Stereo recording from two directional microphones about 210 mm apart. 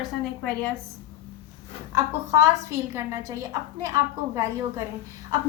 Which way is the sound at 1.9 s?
15° right (ahead or behind).